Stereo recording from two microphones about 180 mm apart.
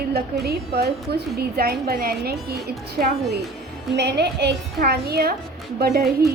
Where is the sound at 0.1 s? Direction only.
60° right (ahead or behind).